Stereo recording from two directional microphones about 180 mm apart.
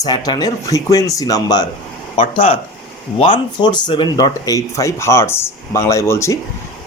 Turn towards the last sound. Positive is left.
turn(degrees=15)  # may be behind; listen again after turning